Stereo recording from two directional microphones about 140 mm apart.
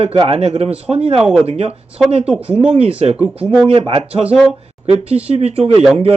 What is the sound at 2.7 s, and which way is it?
Speech, 45° right (ahead or behind).